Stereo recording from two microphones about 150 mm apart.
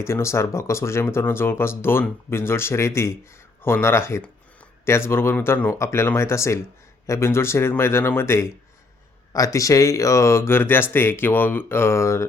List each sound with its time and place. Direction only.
0.0 s speech: 20° left (ahead or behind)